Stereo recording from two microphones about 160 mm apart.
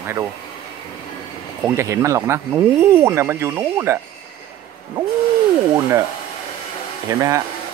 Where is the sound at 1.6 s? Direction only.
15° right (ahead or behind).